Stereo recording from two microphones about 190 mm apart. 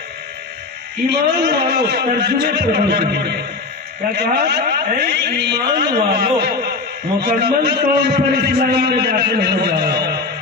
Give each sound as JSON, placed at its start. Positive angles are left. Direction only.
{"t": 1.1, "sound": "a man's voice", "side_deg": -60}